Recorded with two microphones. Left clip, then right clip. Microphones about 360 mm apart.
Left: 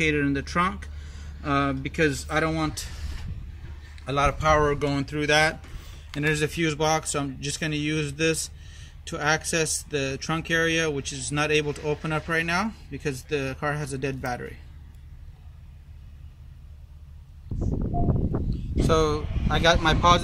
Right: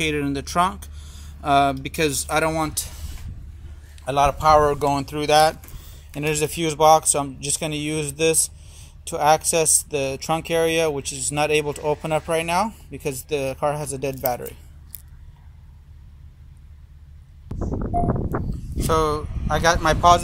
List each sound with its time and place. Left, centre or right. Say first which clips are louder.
0.0 s speech: even; centre
4.0 s speech: right 5 dB; centre
17.6 s a sound: right 6 dB; right
18.9 s speech: right 3 dB; centre